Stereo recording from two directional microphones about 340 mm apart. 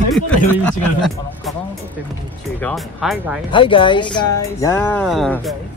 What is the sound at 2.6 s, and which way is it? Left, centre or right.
Speech, centre.